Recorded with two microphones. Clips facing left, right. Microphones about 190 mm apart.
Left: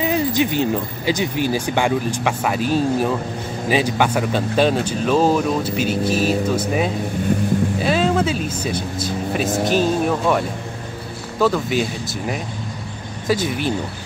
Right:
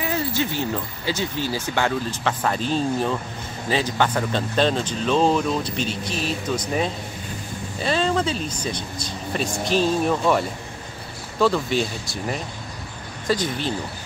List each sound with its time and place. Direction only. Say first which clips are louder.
0.0 s speech: left 6 dB; 15° left (ahead or behind)
11.4 s speech: left 2 dB; 5° left (ahead or behind)
13.3 s speech: left 3 dB; 10° left (ahead or behind)